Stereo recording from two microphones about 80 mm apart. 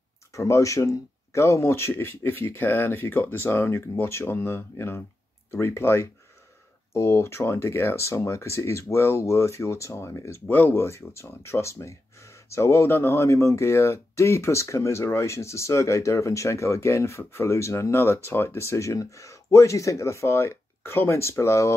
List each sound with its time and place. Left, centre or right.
0.3 s speech: left